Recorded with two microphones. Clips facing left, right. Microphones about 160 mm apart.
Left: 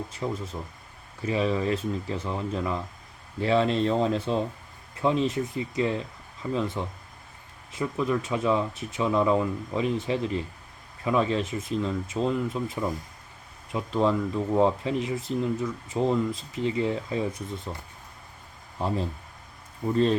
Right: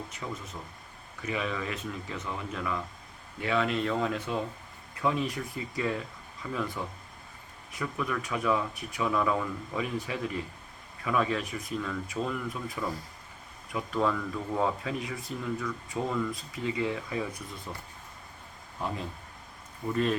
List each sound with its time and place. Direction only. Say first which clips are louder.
0.1 s speech: left 7 dB; 30° left (ahead or behind)
19.9 s speech: left 5 dB; 30° left (ahead or behind)